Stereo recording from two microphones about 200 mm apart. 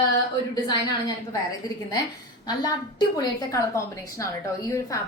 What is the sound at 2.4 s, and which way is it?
A woman's voice, 20° left (ahead or behind).